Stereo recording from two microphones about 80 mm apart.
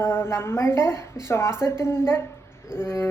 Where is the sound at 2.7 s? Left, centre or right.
Left.